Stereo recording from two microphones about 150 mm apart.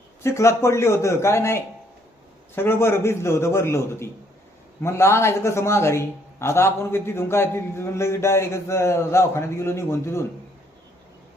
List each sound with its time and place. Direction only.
0.2 s a man's voice: 20° left (ahead or behind)